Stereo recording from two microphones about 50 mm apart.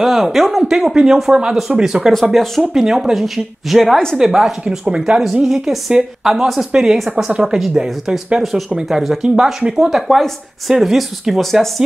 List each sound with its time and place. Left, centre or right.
0.0 s a woman's voice: centre
2.3 s speech: centre
2.7 s a woman's voice: centre
4.8 s speech: right
5.2 s a woman's voice: centre